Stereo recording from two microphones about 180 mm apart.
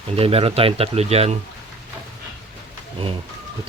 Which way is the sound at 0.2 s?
30° right (ahead or behind).